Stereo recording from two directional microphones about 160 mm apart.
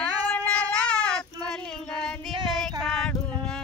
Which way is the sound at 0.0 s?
10° left (ahead or behind).